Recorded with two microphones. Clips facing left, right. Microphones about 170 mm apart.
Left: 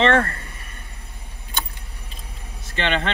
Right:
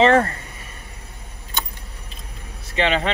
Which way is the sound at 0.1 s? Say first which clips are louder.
Right 3 dB; 25° right (ahead or behind).